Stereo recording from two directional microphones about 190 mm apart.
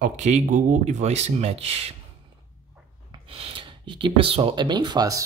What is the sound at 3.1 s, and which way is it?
Speech, 30° right (ahead or behind).